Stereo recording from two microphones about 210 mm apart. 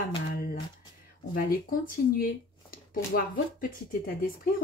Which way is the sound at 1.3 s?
45° left (ahead or behind).